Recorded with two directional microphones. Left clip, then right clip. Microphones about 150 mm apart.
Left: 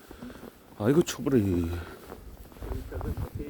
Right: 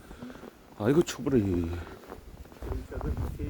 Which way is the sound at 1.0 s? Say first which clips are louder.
Left 1 dB; 40° left (ahead or behind).